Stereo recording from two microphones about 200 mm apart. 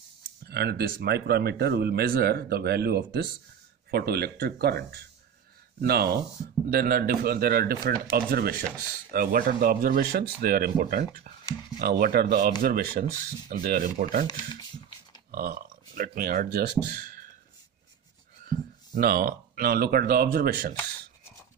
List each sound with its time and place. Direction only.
0.5 s speech: 55° right (ahead or behind)
14.2 s speech: 20° left (ahead or behind)
15.3 s speech: 50° right (ahead or behind)
18.5 s speech: 45° right (ahead or behind)